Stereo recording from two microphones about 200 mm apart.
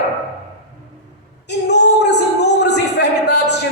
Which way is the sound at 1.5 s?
60° left (ahead or behind).